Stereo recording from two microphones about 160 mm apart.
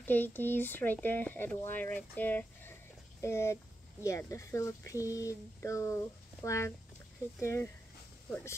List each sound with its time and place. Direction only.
0.0 s speech: 10° left (ahead or behind)